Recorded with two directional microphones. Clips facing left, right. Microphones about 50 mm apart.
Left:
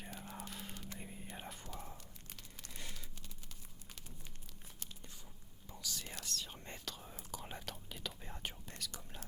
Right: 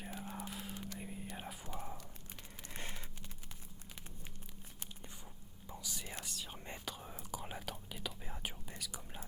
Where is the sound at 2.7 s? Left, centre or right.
Right.